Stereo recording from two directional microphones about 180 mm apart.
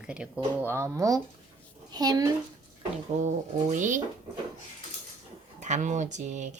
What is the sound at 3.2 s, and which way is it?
Speech, 45° right (ahead or behind).